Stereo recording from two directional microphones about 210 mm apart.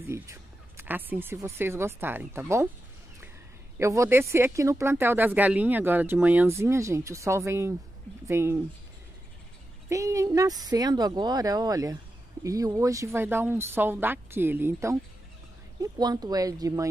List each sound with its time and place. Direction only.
0.1 s speech: 10° right (ahead or behind)
3.7 s speech: 15° right (ahead or behind)
9.8 s speech: 15° right (ahead or behind)